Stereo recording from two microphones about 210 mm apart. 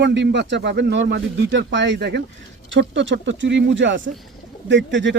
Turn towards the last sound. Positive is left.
turn(degrees=-60)  # may be behind; listen again after turning